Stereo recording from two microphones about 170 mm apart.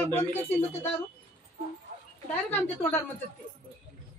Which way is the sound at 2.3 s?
10° left (ahead or behind).